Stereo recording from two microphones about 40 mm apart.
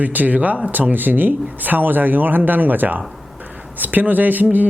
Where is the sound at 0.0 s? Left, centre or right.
Right.